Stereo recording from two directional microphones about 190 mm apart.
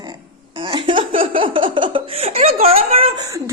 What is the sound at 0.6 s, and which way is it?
Laughter, 25° right (ahead or behind).